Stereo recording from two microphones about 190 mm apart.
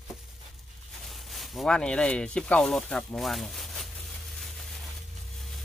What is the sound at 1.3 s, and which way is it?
Speech, centre (ahead or behind).